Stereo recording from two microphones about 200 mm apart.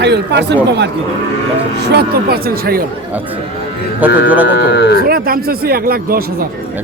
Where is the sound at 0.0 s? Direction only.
60° right (ahead or behind).